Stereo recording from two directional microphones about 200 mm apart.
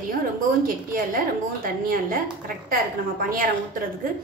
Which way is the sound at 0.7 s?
45° right (ahead or behind).